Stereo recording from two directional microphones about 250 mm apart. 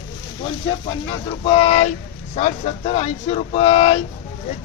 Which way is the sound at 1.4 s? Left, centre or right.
Left.